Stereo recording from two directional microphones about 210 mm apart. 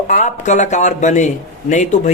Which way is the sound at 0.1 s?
35° left (ahead or behind).